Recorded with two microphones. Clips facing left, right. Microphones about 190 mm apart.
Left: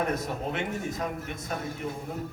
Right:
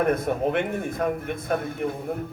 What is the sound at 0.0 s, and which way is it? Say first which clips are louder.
A man's voice: right 7 dB; 55° right (ahead or behind).